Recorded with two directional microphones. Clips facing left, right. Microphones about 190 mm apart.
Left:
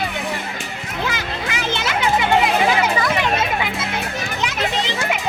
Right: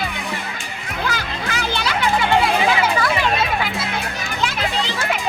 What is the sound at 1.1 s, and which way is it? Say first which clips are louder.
Music: even; 20° left (ahead or behind).